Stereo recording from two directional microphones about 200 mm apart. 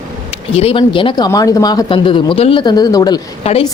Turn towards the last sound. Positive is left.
turn(degrees=30)  # may be behind; listen again after turning